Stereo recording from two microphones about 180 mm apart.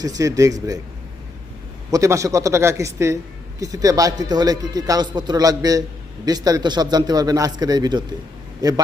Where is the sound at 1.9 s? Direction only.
20° right (ahead or behind).